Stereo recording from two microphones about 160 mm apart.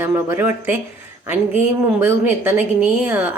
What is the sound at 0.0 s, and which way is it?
Speech, 15° right (ahead or behind).